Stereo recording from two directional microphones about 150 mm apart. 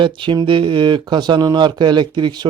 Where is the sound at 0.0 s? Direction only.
35° right (ahead or behind).